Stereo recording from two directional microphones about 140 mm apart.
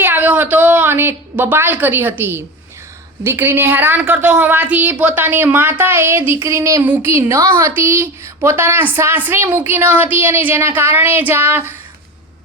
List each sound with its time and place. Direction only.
0.0 s a woman's voice: 15° right (ahead or behind)